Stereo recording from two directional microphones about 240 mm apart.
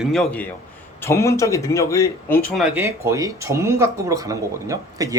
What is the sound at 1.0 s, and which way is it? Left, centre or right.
Speech, centre.